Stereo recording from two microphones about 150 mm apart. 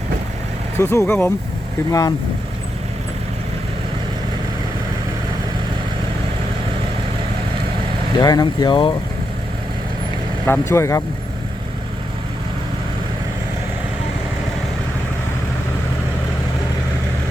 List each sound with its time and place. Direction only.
0.8 s speech: 15° left (ahead or behind)
8.2 s speech: 25° left (ahead or behind)
10.4 s speech: 15° left (ahead or behind)